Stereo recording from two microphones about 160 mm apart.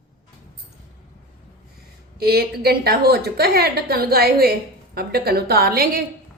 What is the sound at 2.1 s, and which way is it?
A woman's voice, 75° right (ahead or behind).